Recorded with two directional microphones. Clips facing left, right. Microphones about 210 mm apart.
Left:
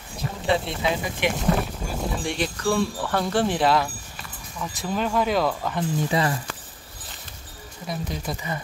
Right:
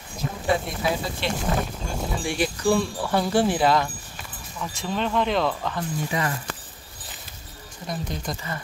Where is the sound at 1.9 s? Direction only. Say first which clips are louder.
Even; 5° right (ahead or behind).